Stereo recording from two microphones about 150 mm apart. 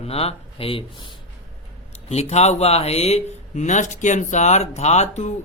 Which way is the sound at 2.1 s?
45° left (ahead or behind).